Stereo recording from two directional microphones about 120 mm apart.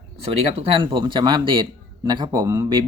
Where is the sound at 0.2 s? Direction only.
50° right (ahead or behind).